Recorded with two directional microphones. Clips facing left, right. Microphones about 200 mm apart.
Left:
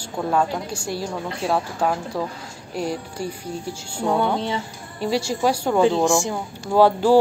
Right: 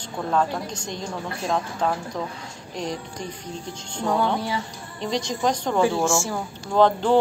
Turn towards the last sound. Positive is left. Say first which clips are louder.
# left 3 dB
turn(degrees=10)  # may be behind; listen again after turning